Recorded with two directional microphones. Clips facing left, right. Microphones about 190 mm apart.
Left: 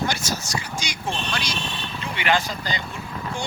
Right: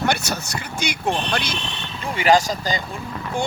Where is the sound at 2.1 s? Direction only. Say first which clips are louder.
Right 7 dB; 40° right (ahead or behind).